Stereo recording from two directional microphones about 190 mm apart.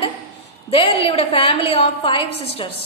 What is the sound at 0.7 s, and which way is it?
A woman's voice, 30° left (ahead or behind).